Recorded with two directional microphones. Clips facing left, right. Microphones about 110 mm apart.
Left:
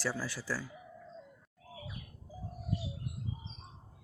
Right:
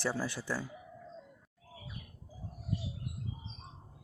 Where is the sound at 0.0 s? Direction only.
20° right (ahead or behind).